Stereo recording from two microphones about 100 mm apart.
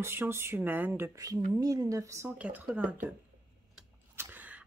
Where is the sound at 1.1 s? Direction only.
35° right (ahead or behind).